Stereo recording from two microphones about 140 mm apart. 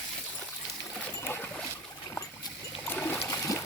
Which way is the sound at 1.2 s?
10° left (ahead or behind).